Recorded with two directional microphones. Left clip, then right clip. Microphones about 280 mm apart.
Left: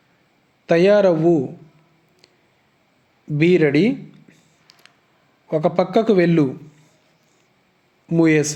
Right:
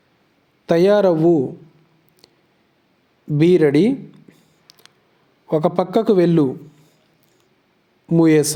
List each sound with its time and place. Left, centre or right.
0.6 s speech: centre
3.2 s clicking: centre
5.5 s a man's voice: centre
8.0 s speech: centre